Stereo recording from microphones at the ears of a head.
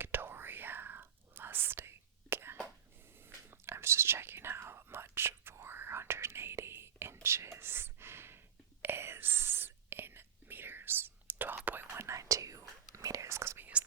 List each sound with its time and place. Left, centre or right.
0.0 s whispering: right
3.7 s whispering: right